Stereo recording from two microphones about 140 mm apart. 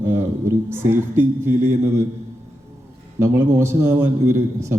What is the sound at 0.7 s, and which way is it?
A man's voice, 15° right (ahead or behind).